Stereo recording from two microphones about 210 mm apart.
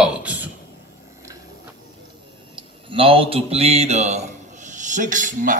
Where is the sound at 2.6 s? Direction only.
25° right (ahead or behind).